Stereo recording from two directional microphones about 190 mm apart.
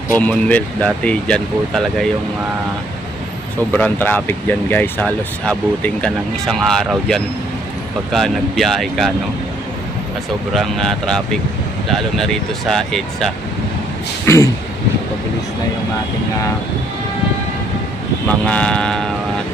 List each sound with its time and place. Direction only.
0.1 s speech: 10° left (ahead or behind)
3.7 s speech: 10° left (ahead or behind)
10.5 s speech: centre (ahead or behind)
14.2 s speech: 15° left (ahead or behind)
18.5 s speech: 5° left (ahead or behind)